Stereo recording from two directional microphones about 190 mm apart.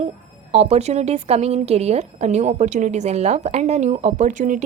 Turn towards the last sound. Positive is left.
turn(degrees=-40)  # may be behind; listen again after turning